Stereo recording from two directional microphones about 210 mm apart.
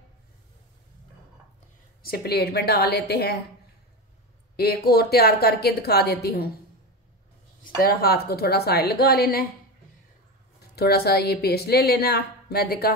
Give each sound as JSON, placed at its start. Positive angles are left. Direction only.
{"t": 2.0, "sound": "a woman's voice", "side_deg": 45}
{"t": 4.6, "sound": "a woman's voice", "side_deg": 50}
{"t": 7.8, "sound": "a woman's voice", "side_deg": 45}
{"t": 10.8, "sound": "a woman's voice", "side_deg": 50}